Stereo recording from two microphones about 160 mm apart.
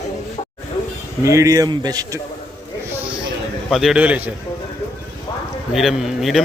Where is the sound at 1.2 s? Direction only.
20° right (ahead or behind).